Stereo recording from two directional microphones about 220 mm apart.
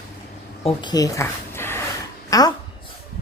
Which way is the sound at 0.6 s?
20° left (ahead or behind).